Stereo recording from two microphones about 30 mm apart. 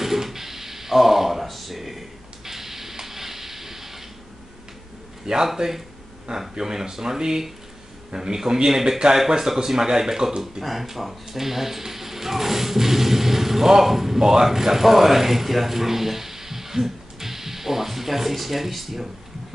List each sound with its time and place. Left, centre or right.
0.0 s a sound: centre
5.2 s a man's voice: right
6.6 s a man's voice: centre
10.6 s speech: centre